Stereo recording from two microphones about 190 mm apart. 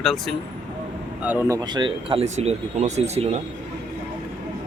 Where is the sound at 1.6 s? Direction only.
25° right (ahead or behind).